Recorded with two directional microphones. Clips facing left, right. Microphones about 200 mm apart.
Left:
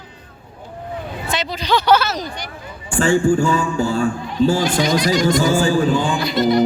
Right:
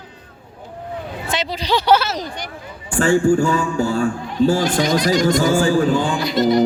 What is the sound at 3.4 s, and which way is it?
A man's voice, 55° right (ahead or behind).